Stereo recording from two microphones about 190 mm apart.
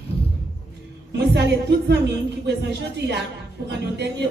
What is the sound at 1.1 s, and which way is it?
A man's voice, 65° right (ahead or behind).